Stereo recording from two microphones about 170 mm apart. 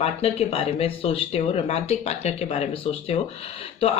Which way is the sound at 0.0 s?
35° left (ahead or behind).